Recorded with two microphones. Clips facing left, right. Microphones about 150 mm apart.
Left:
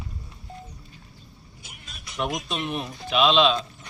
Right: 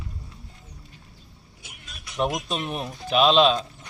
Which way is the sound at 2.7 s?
40° right (ahead or behind).